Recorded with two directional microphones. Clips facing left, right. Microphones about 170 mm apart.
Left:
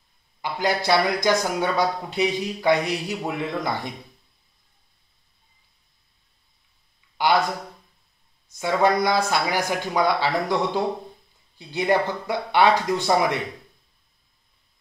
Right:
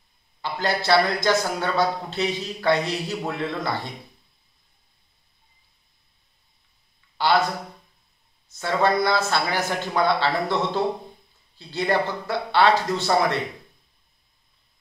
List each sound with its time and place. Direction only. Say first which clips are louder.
0.4 s a man's voice: left 1 dB; 15° left (ahead or behind)
7.2 s speech: even; 15° left (ahead or behind)
8.5 s a man's voice: left 1 dB; 15° left (ahead or behind)